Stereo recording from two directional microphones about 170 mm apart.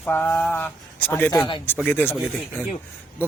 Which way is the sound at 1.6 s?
10° left (ahead or behind).